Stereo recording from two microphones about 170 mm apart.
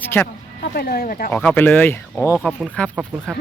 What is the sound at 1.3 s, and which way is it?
Speech, 10° left (ahead or behind).